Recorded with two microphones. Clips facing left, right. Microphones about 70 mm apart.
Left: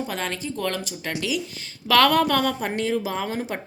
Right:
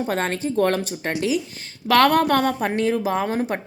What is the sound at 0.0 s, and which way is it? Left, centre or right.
A woman's voice, right.